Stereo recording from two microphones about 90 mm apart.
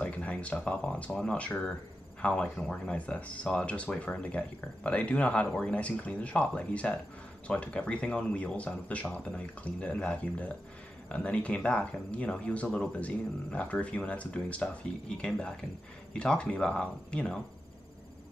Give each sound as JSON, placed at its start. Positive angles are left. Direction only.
{"t": 0.0, "sound": "speech", "side_deg": 15}